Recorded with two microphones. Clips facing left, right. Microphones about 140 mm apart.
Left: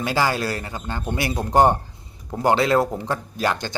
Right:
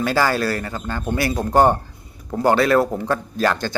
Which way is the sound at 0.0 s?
15° left (ahead or behind).